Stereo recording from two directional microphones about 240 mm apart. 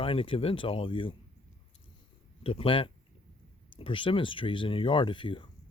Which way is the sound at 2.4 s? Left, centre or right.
Left.